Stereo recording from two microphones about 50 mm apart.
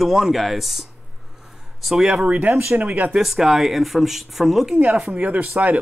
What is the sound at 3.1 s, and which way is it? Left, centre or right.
Speech, centre.